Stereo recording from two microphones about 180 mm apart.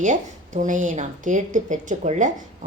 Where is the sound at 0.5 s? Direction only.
45° right (ahead or behind).